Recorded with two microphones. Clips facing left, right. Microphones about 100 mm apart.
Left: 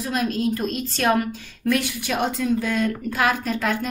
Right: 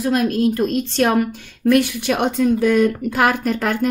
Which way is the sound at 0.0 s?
55° right (ahead or behind).